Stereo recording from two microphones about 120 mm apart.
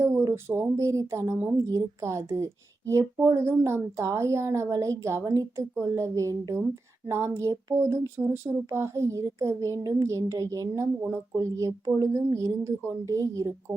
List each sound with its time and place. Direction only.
0.0 s speech: 20° right (ahead or behind)